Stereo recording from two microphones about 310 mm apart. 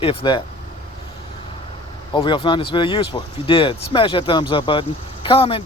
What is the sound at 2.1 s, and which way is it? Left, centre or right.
Speech, centre.